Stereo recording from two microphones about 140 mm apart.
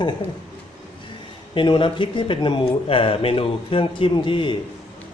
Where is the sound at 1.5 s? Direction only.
35° left (ahead or behind).